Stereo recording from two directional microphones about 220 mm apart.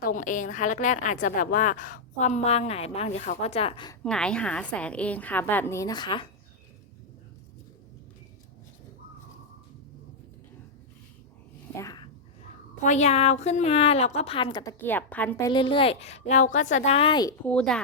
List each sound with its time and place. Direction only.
0.0 s a woman's voice: 35° left (ahead or behind)
4.0 s a woman's voice: 5° left (ahead or behind); by 6.2 s 20° left (ahead or behind)
11.8 s a sound: 15° left (ahead or behind)
12.8 s a woman's voice: 30° left (ahead or behind)
17.4 s speech: 5° left (ahead or behind)